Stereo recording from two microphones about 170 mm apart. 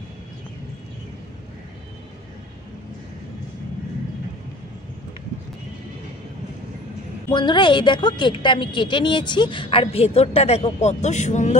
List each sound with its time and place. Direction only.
7.2 s a woman's voice: 25° left (ahead or behind); by 11.5 s 45° left (ahead or behind)